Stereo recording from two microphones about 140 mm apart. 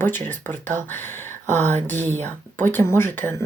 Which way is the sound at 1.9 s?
55° right (ahead or behind).